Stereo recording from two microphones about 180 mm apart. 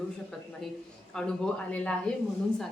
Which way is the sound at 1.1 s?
5° left (ahead or behind).